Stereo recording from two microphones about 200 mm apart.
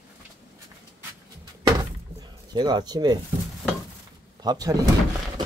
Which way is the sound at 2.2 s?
20° right (ahead or behind).